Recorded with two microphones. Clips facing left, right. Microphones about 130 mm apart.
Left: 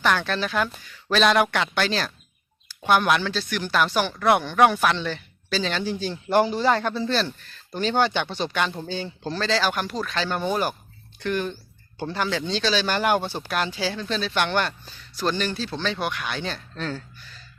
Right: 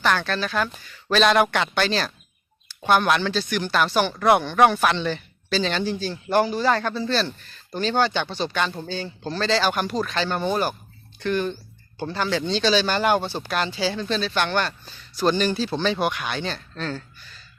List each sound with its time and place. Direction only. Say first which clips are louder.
0.0 s speech: even; 10° left (ahead or behind)
1.1 s speech: right 1 dB; centre (ahead or behind)
6.0 s speech: left 2 dB; 20° left (ahead or behind)
7.1 s speech: right 1 dB; 5° left (ahead or behind)
14.7 s speech: even; centre (ahead or behind)